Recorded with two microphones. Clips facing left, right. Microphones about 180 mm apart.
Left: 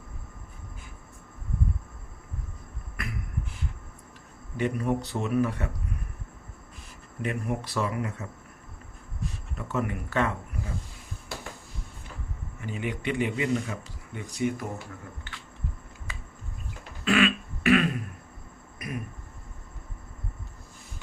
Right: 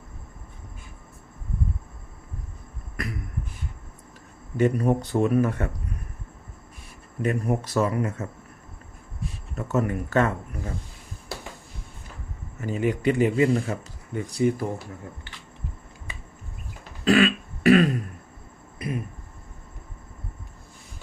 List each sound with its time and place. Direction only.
3.0 s beatboxing: 40° right (ahead or behind)
4.5 s speech: 45° right (ahead or behind)
7.2 s speech: 40° right (ahead or behind)
9.6 s speech: 45° right (ahead or behind)
12.5 s speech: 40° right (ahead or behind)
17.0 s throat clearing: 35° right (ahead or behind)
18.8 s a sound: 30° right (ahead or behind)